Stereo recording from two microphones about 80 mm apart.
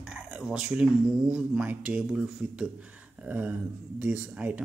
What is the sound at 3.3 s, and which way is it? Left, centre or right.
Speech, right.